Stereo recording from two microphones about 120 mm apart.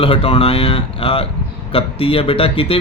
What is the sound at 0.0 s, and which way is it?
A man's voice, 50° left (ahead or behind).